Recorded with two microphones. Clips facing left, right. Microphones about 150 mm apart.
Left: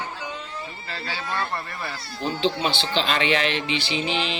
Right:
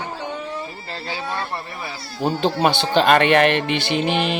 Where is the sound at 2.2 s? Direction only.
50° right (ahead or behind).